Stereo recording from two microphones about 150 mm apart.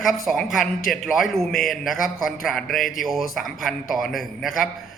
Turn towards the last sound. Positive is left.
turn(degrees=0)  # may be behind; listen again after turning